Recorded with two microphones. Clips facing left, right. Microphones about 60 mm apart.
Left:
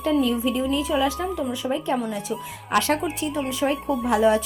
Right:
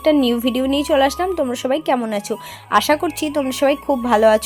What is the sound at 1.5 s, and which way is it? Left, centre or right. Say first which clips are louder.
A woman's voice: right 7 dB; right.